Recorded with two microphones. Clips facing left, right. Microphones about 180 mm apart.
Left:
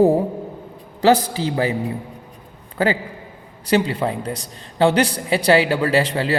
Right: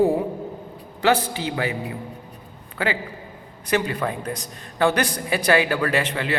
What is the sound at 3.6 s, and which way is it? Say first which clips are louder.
A man's voice: left 4 dB; 30° left (ahead or behind).